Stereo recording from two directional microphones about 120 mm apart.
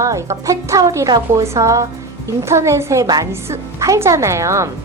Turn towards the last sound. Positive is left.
turn(degrees=-25)  # may be behind; listen again after turning